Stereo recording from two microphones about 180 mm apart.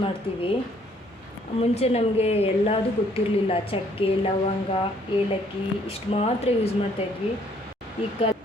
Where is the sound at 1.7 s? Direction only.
35° left (ahead or behind).